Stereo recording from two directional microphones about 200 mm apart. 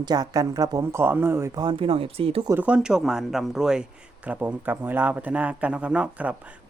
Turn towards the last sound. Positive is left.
turn(degrees=-5)  # may be behind; listen again after turning